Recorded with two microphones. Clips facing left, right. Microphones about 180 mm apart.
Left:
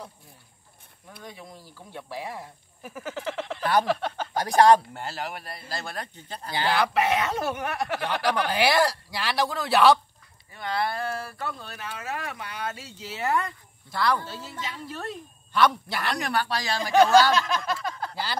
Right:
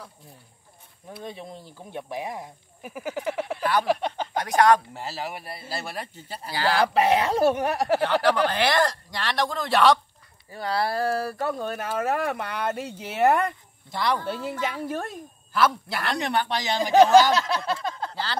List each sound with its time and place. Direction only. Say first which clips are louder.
1.2 s speech: right 5 dB; 25° right (ahead or behind)
4.4 s speech: left 2 dB; 30° left (ahead or behind)
4.9 s speech: right 1 dB; centre (ahead or behind)
6.5 s speech: right 1 dB; 20° left (ahead or behind)
6.8 s speech: right 5 dB; 30° right (ahead or behind)
8.2 s speech: right 2 dB; 10° left (ahead or behind)
10.5 s speech: right 3 dB; 35° right (ahead or behind); by 13.5 s 60° right (ahead or behind)
13.8 s speech: even; 20° right (ahead or behind)
14.2 s speech: right 8 dB; 55° right (ahead or behind)
15.5 s speech: left 1 dB; centre (ahead or behind)
16.2 s speech: right 4 dB; 25° right (ahead or behind)
17.5 s speech: right 2 dB; 30° right (ahead or behind)
18.1 s speech: right 1 dB; 10° left (ahead or behind)